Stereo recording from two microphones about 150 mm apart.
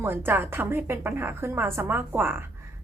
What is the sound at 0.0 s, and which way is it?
A woman's voice, 15° right (ahead or behind).